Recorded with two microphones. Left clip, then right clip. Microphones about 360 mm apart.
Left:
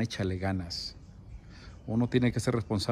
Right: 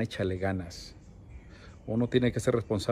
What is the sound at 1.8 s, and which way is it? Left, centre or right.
Speech, centre.